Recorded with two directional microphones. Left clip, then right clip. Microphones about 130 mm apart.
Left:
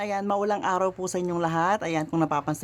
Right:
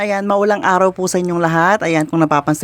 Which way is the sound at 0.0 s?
35° right (ahead or behind).